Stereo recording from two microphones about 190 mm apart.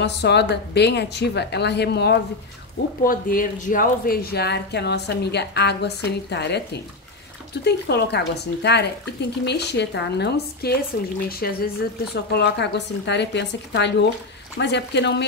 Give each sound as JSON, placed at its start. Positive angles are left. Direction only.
{"t": 0.0, "sound": "speech", "side_deg": 65}
{"t": 3.1, "sound": "speech", "side_deg": 45}